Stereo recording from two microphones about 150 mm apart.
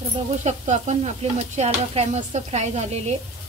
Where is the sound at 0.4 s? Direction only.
50° right (ahead or behind).